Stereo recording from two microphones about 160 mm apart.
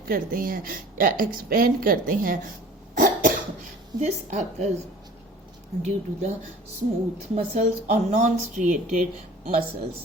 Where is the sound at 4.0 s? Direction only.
45° right (ahead or behind).